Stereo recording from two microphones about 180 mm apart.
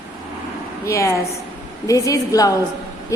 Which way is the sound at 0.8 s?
15° left (ahead or behind).